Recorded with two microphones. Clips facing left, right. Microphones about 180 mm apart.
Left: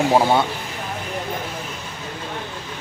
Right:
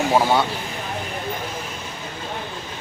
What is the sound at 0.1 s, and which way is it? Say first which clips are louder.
Speech: even; 20° left (ahead or behind).